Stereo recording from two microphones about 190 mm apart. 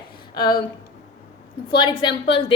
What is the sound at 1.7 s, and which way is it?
Speech, 25° left (ahead or behind).